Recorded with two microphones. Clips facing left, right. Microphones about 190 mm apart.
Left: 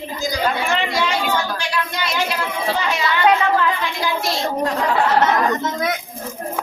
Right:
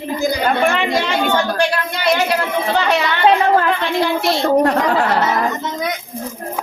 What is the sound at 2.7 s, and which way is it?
A woman's voice, 70° right (ahead or behind).